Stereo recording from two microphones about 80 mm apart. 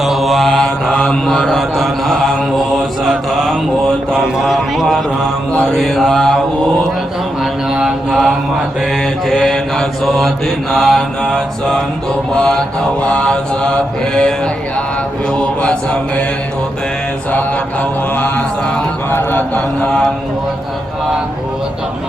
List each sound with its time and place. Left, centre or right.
0.0 s mantra: centre
4.1 s a sound: centre
5.5 s mantra: centre
7.7 s mantra: centre
18.1 s mantra: left